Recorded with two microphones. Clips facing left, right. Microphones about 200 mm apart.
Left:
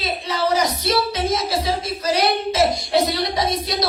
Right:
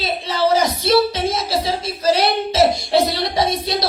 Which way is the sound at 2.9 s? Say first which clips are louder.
Right 1 dB; 30° right (ahead or behind).